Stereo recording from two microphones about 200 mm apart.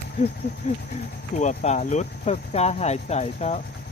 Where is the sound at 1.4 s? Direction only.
35° left (ahead or behind).